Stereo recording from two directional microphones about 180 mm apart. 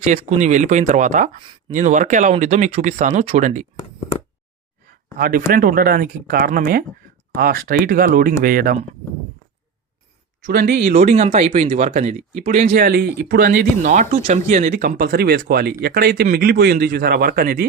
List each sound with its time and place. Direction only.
0.0 s speech: 40° right (ahead or behind)
5.1 s a man's voice: 55° right (ahead or behind)
10.5 s speech: 70° right (ahead or behind)
10.8 s speech: 45° right (ahead or behind)
12.8 s a man's voice: 60° right (ahead or behind)